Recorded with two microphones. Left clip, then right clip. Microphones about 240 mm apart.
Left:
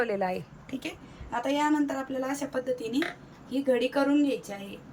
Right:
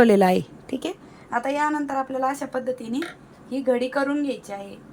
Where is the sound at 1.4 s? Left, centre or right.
Centre.